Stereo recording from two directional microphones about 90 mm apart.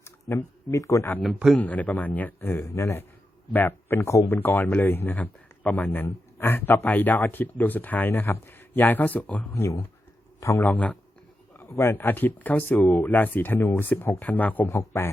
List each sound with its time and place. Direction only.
0.3 s speech: 35° left (ahead or behind)
1.5 s speech: 15° left (ahead or behind); by 3.0 s 35° left (ahead or behind)
3.5 s speech: 20° left (ahead or behind)
4.4 s speech: 20° left (ahead or behind)
9.5 s speech: 30° left (ahead or behind)
10.6 s a man's voice: 15° left (ahead or behind)
11.5 s speech: 30° left (ahead or behind)
14.7 s speech: 30° left (ahead or behind)